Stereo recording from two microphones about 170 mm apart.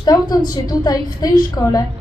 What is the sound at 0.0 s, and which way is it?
A woman's voice, 25° left (ahead or behind).